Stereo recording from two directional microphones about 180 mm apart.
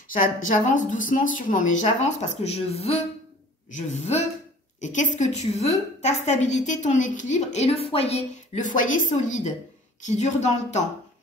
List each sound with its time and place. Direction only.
0.1 s a woman's voice: 50° left (ahead or behind)